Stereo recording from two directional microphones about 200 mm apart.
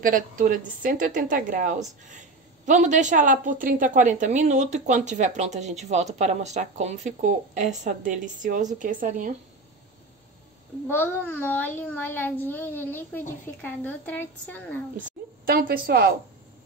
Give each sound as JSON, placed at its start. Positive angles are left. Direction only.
{"t": 0.0, "sound": "a woman's voice", "side_deg": -45}
{"t": 10.9, "sound": "a child's voice", "side_deg": 10}
{"t": 15.0, "sound": "a woman's voice", "side_deg": -45}